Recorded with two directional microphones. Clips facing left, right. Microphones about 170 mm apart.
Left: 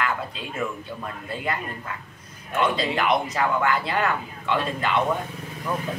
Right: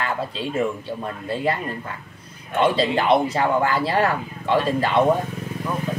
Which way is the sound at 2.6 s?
30° right (ahead or behind).